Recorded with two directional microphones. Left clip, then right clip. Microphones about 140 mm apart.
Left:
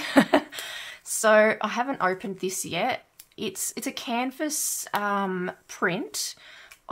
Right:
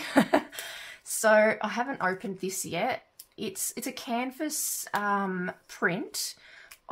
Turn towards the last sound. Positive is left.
turn(degrees=30)  # may be behind; listen again after turning